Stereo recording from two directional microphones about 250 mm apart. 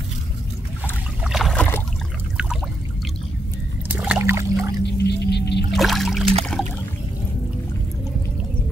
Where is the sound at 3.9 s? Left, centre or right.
Centre.